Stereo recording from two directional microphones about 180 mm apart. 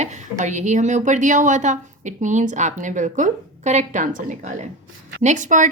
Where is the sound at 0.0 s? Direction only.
40° right (ahead or behind).